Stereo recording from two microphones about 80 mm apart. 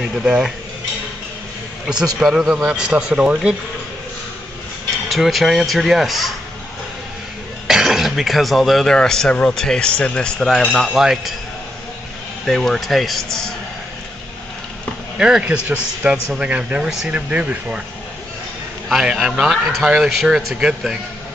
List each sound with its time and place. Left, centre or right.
0.2 s speech: centre
2.2 s speech: centre
5.1 s speech: centre
7.6 s speech: centre
12.4 s speech: centre
15.1 s speech: centre
18.9 s speech: centre